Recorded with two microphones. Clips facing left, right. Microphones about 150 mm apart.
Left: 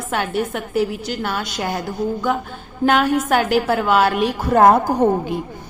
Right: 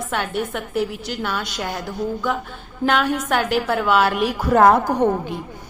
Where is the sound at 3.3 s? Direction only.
5° left (ahead or behind).